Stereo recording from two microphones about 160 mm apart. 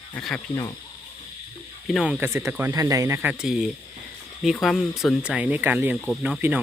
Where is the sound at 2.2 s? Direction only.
15° right (ahead or behind).